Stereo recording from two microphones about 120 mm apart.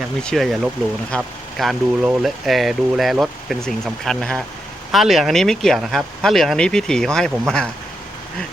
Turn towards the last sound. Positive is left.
turn(degrees=5)  # may be behind; listen again after turning